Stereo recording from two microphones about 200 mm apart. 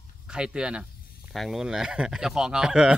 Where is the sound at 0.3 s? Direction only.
5° right (ahead or behind).